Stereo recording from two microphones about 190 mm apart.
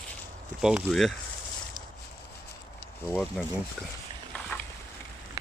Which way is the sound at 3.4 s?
5° left (ahead or behind).